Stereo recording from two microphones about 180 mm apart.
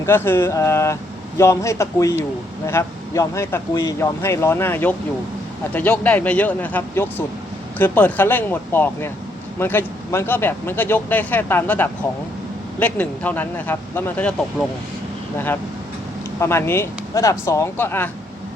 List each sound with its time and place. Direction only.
0.0 s speech: 10° left (ahead or behind)
16.4 s speech: 15° left (ahead or behind)